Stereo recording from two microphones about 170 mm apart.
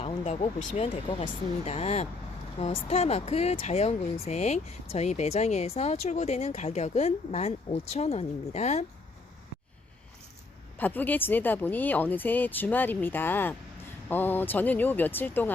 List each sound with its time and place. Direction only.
0.8 s speech: 40° left (ahead or behind)
10.8 s speech: 10° left (ahead or behind)